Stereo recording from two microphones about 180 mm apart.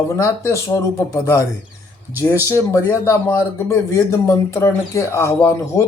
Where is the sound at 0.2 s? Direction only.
15° left (ahead or behind).